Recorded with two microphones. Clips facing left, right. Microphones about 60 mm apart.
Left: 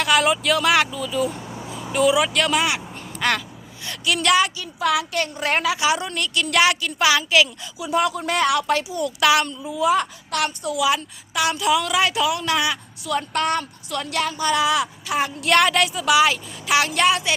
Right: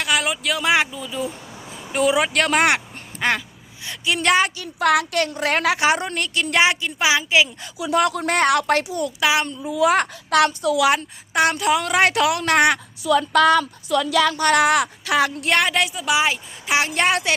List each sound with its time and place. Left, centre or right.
0.0 s speech: centre
0.6 s speech: centre
1.9 s speech: right
3.2 s quack: right
4.0 s speech: right
4.5 s speech: right; by 7.5 s centre
7.8 s speech: right
9.2 s speech: right
9.6 s speech: right
10.8 s speech: right
14.3 s speech: right
15.4 s a woman's voice: centre
17.1 s speech: right